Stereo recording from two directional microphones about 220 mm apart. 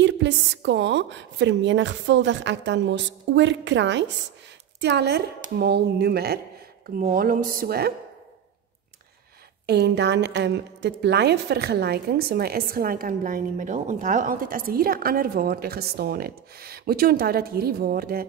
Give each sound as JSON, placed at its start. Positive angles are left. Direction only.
{"t": 0.0, "sound": "a woman's voice", "side_deg": -55}
{"t": 9.7, "sound": "a woman's voice", "side_deg": -50}